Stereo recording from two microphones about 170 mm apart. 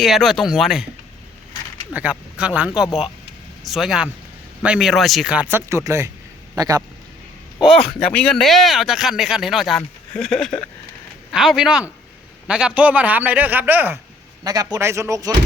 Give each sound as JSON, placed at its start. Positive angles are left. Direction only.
{"t": 0.0, "sound": "speech", "side_deg": 0}
{"t": 1.9, "sound": "a man's voice", "side_deg": -10}
{"t": 7.6, "sound": "a man's voice", "side_deg": 0}